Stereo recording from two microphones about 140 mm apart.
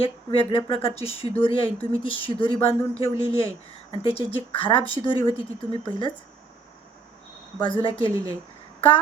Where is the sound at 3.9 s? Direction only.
40° left (ahead or behind).